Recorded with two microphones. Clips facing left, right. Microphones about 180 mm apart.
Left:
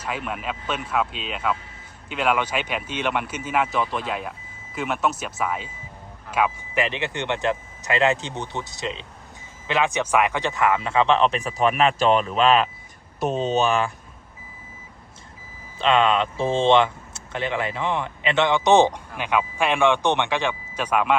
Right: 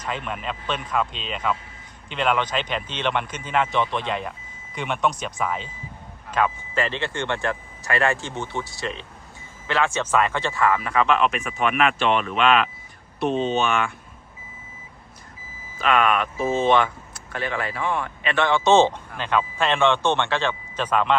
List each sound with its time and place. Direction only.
0.0 s speech: 5° left (ahead or behind); by 13.9 s 35° left (ahead or behind)
15.8 s speech: 25° left (ahead or behind)